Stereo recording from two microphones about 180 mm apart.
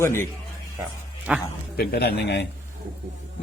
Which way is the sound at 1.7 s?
60° left (ahead or behind).